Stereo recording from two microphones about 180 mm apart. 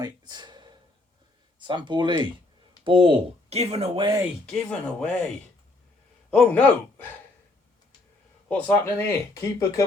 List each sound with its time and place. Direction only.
0.0 s a sound: 25° right (ahead or behind)
1.5 s speech: 25° right (ahead or behind)
4.4 s speech: 5° left (ahead or behind)
6.3 s speech: 5° left (ahead or behind)
8.4 s speech: 10° left (ahead or behind)